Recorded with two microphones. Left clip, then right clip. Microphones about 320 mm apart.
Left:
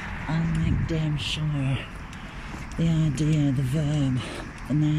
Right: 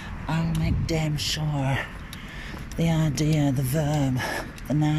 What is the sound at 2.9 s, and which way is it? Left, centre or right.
Speech, right.